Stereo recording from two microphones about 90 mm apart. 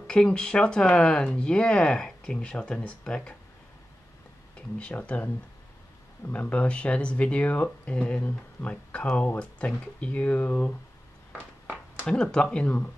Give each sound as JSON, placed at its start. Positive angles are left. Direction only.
{"t": 0.0, "sound": "speech", "side_deg": 10}
{"t": 4.6, "sound": "speech", "side_deg": 15}
{"t": 11.6, "sound": "a sound", "side_deg": -20}
{"t": 12.1, "sound": "speech", "side_deg": 10}